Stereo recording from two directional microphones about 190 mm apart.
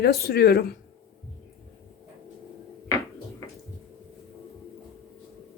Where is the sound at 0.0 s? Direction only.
55° left (ahead or behind).